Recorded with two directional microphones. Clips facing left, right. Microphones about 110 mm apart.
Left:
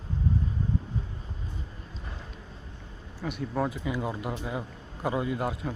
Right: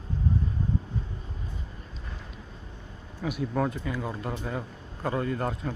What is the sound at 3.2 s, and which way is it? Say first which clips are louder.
A man's voice: right 2 dB; centre (ahead or behind).